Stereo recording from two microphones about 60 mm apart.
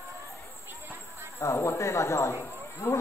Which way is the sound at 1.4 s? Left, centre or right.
Left.